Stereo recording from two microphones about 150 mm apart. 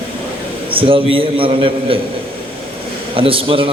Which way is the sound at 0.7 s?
35° right (ahead or behind).